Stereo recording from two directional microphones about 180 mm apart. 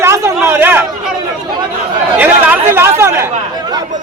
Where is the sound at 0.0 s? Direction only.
15° right (ahead or behind).